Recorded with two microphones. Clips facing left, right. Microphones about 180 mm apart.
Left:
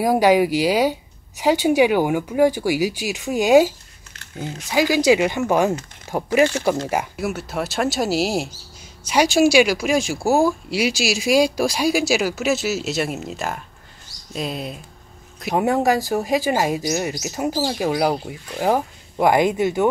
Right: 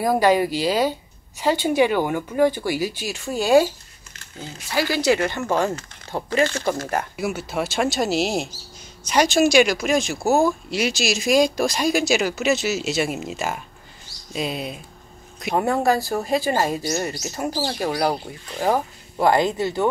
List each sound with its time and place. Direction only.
0.0 s speech: 10° left (ahead or behind)
7.2 s speech: centre (ahead or behind)
15.5 s speech: 10° left (ahead or behind)